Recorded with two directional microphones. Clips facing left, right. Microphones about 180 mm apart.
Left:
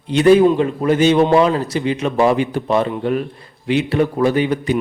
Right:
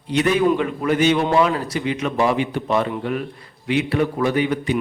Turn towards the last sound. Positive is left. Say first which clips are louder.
# left 3 dB
turn(degrees=35)  # may be behind; listen again after turning